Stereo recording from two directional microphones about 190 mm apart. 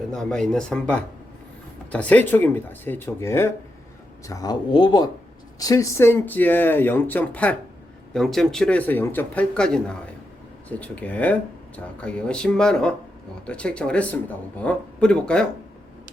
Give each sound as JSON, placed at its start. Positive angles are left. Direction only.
{"t": 0.1, "sound": "speech", "side_deg": 5}